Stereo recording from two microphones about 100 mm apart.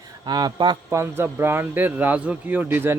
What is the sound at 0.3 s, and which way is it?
Speech, 45° right (ahead or behind).